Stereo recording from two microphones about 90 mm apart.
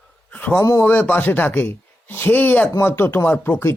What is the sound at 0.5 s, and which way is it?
Speech, 35° left (ahead or behind).